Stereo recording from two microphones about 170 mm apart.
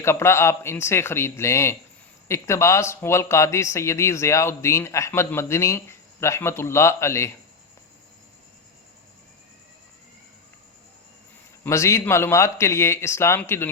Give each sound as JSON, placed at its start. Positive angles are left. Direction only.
{"t": 0.0, "sound": "speech", "side_deg": 15}
{"t": 11.6, "sound": "speech", "side_deg": 15}